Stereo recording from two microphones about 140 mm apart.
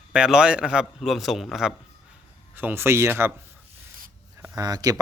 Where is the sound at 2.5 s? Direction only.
15° right (ahead or behind).